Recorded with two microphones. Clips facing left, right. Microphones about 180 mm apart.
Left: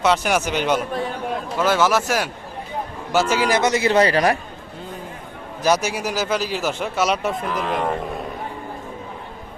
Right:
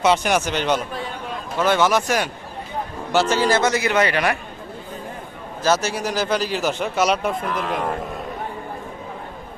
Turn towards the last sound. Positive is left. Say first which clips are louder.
# left 1 dB
turn(degrees=0)  # may be behind; listen again after turning